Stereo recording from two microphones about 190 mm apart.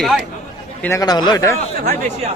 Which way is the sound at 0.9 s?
20° left (ahead or behind).